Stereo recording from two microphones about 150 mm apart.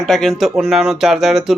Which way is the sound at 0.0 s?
Centre (ahead or behind).